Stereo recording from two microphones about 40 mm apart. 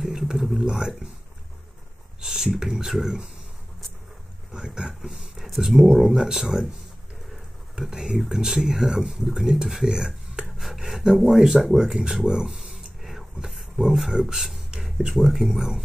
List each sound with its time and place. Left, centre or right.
0.0 s speech: centre
2.2 s speech: centre
4.5 s speech: centre
5.4 s speech: centre
7.8 s speech: centre